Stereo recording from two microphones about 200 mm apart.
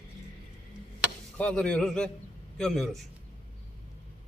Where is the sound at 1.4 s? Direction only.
5° left (ahead or behind).